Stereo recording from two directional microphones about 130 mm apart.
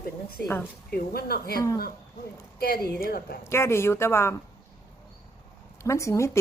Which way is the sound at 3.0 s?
90° left.